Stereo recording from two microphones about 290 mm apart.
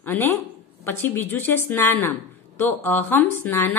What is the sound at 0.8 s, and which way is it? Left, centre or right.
Speech, centre.